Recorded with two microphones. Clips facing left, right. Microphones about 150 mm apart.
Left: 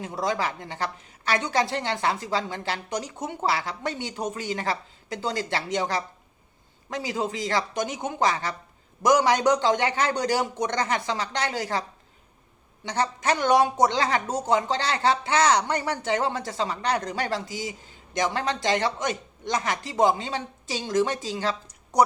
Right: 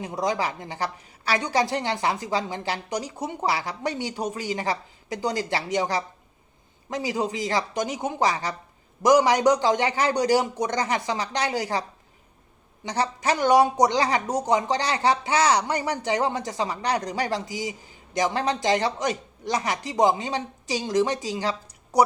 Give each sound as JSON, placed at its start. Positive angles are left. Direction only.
{"t": 0.0, "sound": "speech", "side_deg": -15}
{"t": 1.7, "sound": "speech", "side_deg": -15}
{"t": 12.9, "sound": "speech", "side_deg": -10}